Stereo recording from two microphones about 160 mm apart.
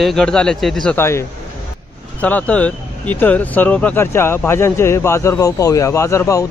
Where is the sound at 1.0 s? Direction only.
15° left (ahead or behind).